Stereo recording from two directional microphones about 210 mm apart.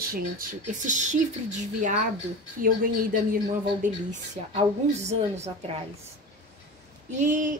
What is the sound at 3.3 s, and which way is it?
A woman's voice, 35° right (ahead or behind).